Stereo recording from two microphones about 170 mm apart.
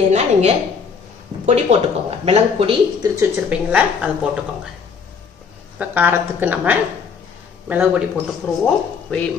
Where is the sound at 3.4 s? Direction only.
5° right (ahead or behind).